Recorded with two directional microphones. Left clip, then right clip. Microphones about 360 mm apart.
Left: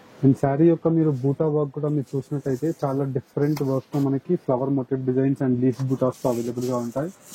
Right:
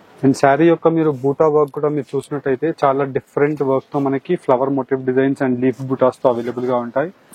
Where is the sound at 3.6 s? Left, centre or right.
Centre.